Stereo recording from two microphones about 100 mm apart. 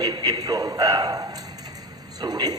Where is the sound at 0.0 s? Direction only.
45° right (ahead or behind).